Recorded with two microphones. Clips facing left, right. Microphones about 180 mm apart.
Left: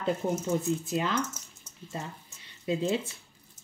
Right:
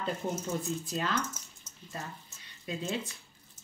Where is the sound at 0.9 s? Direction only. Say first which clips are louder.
Left 2 dB; 10° left (ahead or behind).